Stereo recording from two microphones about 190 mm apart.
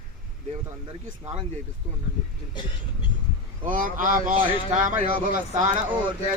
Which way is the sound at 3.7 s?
45° right (ahead or behind).